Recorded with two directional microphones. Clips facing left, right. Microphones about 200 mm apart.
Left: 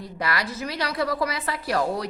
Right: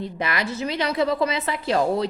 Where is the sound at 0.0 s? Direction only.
20° right (ahead or behind).